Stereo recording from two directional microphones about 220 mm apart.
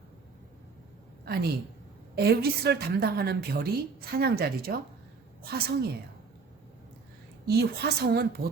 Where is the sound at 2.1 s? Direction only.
50° right (ahead or behind).